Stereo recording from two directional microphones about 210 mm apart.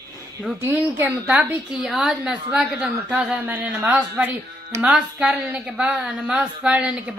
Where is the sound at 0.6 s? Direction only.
10° right (ahead or behind).